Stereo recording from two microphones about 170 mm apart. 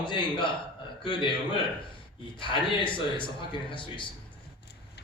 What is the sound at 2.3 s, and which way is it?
A man's voice, 30° left (ahead or behind).